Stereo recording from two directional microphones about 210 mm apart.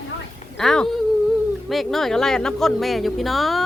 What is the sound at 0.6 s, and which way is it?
Speech, centre (ahead or behind).